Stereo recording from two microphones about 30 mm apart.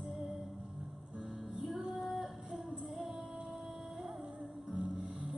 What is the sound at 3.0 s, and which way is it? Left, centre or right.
Music, centre.